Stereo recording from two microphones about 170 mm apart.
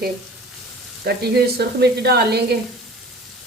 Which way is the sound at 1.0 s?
70° right (ahead or behind).